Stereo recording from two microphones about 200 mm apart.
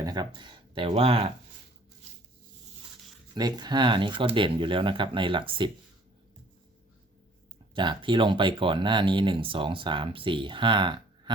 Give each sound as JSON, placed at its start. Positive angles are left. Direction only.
{"t": 0.0, "sound": "speech", "side_deg": -20}
{"t": 3.3, "sound": "speech", "side_deg": -20}
{"t": 7.7, "sound": "speech", "side_deg": -25}